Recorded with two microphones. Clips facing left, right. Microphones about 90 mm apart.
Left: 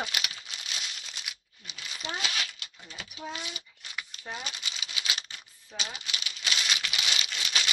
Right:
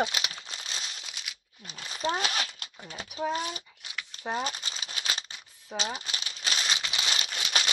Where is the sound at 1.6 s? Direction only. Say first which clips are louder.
Right 8 dB; 40° right (ahead or behind).